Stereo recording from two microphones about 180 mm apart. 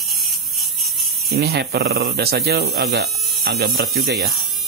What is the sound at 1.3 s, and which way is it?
Speech, 60° right (ahead or behind).